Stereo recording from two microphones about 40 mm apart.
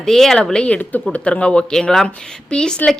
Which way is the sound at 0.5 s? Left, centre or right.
Left.